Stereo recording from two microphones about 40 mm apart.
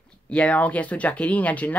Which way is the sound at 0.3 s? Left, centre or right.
Left.